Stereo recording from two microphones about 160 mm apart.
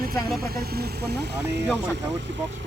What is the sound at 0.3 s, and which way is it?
Speech, 75° right (ahead or behind).